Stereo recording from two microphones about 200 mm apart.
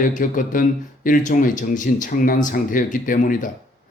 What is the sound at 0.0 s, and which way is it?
Speech, 40° left (ahead or behind).